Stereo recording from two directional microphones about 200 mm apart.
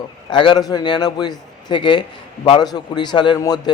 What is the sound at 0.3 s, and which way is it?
Speech, 25° left (ahead or behind).